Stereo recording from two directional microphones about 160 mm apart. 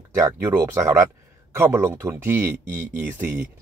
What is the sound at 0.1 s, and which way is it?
Speech, 15° right (ahead or behind).